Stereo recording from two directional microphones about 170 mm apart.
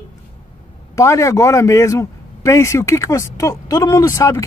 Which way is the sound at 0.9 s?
15° left (ahead or behind).